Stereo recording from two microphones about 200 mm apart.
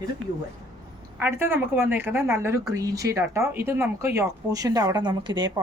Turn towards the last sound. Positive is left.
turn(degrees=-20)  # may be behind; listen again after turning